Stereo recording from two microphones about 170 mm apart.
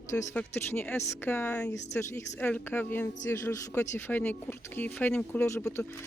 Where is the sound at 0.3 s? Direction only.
15° left (ahead or behind).